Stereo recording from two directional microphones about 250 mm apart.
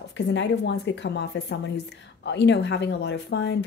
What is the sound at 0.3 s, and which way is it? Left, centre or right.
A woman's voice, left.